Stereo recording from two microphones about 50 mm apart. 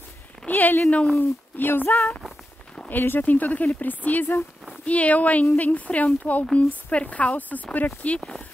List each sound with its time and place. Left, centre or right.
0.5 s a sound: left
0.8 s speech: left
1.1 s speech: left